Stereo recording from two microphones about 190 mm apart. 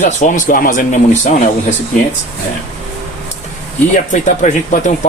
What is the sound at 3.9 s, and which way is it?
Speech, 40° left (ahead or behind).